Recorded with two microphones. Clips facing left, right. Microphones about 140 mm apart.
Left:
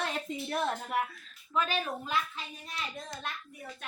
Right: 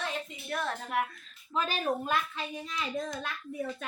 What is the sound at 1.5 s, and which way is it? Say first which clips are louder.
Speech: even; 35° right (ahead or behind).